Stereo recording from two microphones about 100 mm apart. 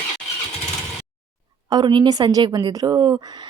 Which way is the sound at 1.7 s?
45° right (ahead or behind).